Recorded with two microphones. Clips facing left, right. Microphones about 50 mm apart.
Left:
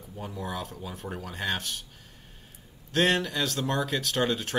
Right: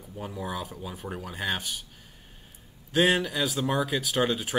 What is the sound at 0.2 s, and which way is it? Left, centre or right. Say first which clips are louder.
Speech: right 1 dB; centre.